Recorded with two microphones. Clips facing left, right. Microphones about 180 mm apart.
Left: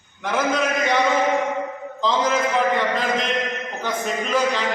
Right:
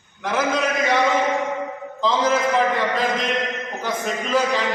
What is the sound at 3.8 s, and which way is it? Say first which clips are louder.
Speech: even; centre (ahead or behind).